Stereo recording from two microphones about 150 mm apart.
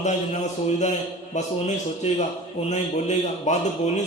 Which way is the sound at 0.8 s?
50° left (ahead or behind).